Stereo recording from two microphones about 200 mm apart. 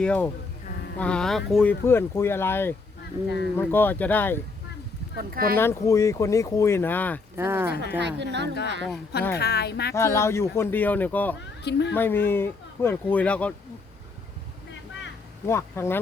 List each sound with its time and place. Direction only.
0.0 s speech: 5° left (ahead or behind)
3.2 s speech: 60° left (ahead or behind)
3.6 s speech: 10° left (ahead or behind)
5.1 s speech: 50° right (ahead or behind)
5.5 s speech: 15° left (ahead or behind)
7.3 s speech: 10° right (ahead or behind)
7.9 s a woman's voice: 60° right (ahead or behind)
9.4 s speech: 55° left (ahead or behind)
9.9 s speech: 15° left (ahead or behind)
11.6 s speech: 60° left (ahead or behind)
11.9 s speech: 10° left (ahead or behind)
15.4 s speech: 15° left (ahead or behind)